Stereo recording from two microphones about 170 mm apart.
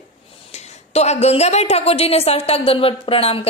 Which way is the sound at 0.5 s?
40° left (ahead or behind).